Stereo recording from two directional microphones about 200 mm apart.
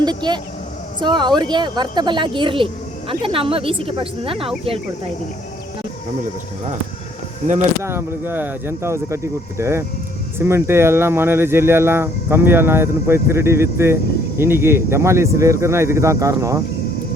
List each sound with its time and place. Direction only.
0.0 s speech: 20° right (ahead or behind)
7.4 s speech: 40° right (ahead or behind)
7.8 s speech: 10° right (ahead or behind)